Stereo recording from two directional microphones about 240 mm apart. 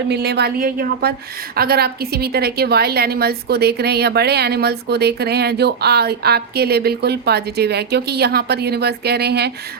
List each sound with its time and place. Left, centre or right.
0.1 s a woman's voice: right